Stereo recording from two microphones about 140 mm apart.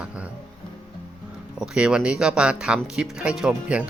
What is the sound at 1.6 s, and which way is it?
Speech, 5° right (ahead or behind).